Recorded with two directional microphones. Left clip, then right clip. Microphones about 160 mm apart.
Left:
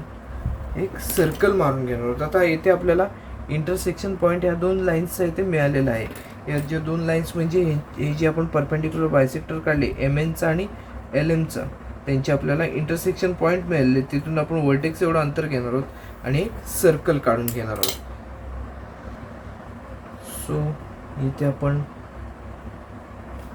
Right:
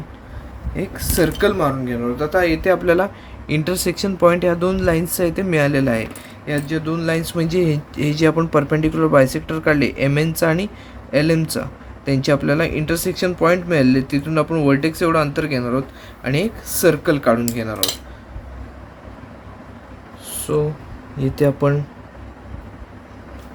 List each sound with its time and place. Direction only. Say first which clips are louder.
0.9 s speech: right 3 dB; 60° right (ahead or behind)
20.5 s speech: right 9 dB; 80° right
21.3 s speech: right 8 dB; 90° right